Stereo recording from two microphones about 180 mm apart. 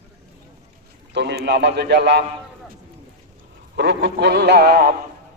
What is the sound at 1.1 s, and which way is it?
A man's voice, 70° right (ahead or behind).